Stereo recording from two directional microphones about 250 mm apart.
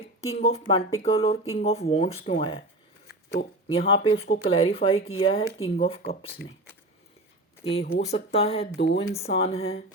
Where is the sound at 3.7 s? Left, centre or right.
Left.